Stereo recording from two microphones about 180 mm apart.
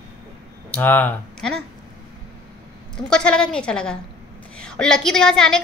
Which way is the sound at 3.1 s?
5° left (ahead or behind).